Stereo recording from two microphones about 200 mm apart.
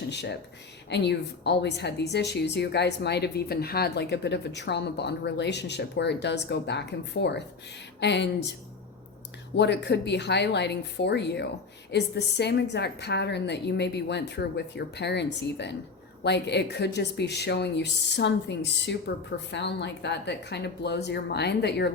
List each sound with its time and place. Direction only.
0.1 s a woman's voice: 60° left (ahead or behind)
9.6 s a woman's voice: 60° left (ahead or behind)